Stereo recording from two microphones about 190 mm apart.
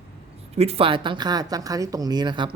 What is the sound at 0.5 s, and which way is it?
Speech, 30° right (ahead or behind).